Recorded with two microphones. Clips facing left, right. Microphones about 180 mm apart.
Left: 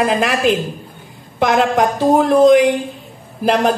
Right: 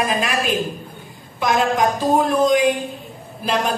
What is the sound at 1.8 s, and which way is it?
A woman's voice, 70° left (ahead or behind).